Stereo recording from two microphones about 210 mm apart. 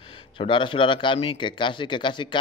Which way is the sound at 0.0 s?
25° left (ahead or behind).